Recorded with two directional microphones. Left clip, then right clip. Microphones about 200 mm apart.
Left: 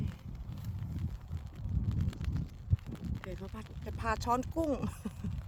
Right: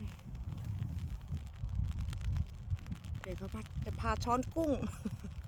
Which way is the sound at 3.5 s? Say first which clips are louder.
Left 1 dB; 10° left (ahead or behind).